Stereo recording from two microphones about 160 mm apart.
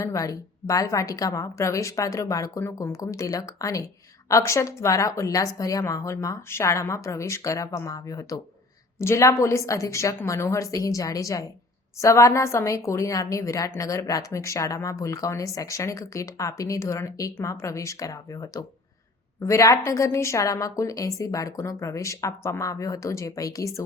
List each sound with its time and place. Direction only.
0.0 s a woman's voice: 20° left (ahead or behind)